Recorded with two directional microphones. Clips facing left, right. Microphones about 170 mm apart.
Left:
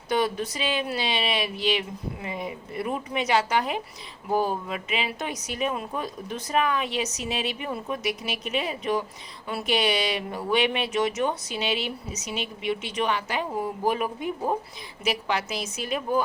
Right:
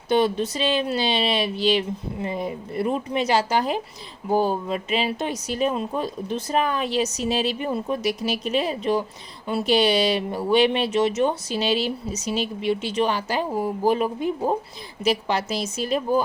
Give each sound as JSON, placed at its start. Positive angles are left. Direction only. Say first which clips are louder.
{"t": 0.1, "sound": "speech", "louder": "right 5 dB", "side_deg": -25}